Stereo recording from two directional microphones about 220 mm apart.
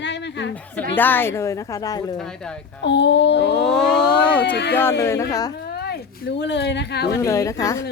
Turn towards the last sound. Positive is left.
turn(degrees=15)  # may be behind; listen again after turning